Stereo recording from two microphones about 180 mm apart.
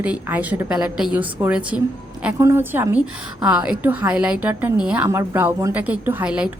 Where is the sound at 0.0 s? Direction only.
10° right (ahead or behind).